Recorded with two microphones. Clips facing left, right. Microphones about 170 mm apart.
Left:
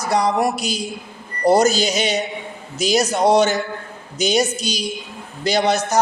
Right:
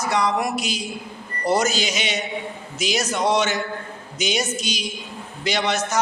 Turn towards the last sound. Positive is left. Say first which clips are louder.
# left 5 dB
turn(degrees=35)  # may be behind; listen again after turning